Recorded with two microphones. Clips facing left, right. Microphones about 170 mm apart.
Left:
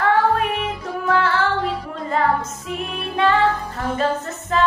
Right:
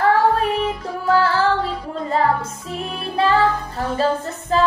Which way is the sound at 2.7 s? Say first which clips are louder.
Even; 35° right (ahead or behind).